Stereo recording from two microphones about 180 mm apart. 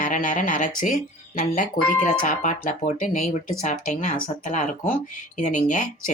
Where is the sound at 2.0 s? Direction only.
45° left (ahead or behind).